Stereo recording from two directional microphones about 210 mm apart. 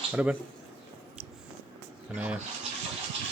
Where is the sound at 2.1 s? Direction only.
5° right (ahead or behind).